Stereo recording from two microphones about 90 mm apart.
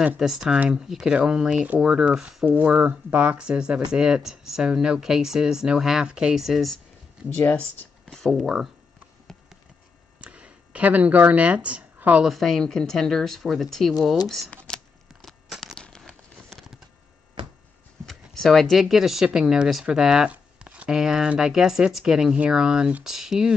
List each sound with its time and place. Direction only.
0.2 s speech: 5° right (ahead or behind)
7.3 s speech: 20° left (ahead or behind)
8.2 s speech: 5° left (ahead or behind)
10.2 s speech: 15° right (ahead or behind)
12.3 s speech: centre (ahead or behind)
15.2 s crumpling: 5° left (ahead or behind)
18.0 s speech: 5° left (ahead or behind)